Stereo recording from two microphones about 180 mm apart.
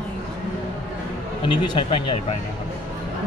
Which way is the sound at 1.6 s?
25° left (ahead or behind).